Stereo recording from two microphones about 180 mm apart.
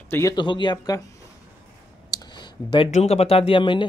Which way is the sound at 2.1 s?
25° left (ahead or behind).